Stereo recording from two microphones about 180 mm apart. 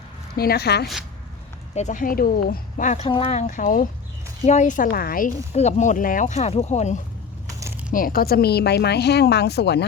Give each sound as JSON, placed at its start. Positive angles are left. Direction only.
{"t": 0.3, "sound": "speech", "side_deg": 60}
{"t": 1.7, "sound": "speech", "side_deg": 45}
{"t": 5.5, "sound": "speech", "side_deg": 40}
{"t": 7.9, "sound": "speech", "side_deg": 55}